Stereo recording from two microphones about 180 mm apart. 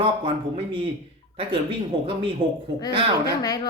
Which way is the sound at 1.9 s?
30° right (ahead or behind).